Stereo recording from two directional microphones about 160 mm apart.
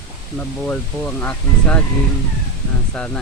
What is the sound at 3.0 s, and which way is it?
Speech, 5° left (ahead or behind).